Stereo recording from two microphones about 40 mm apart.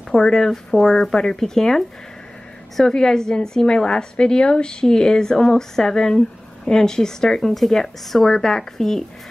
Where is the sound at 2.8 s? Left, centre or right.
Centre.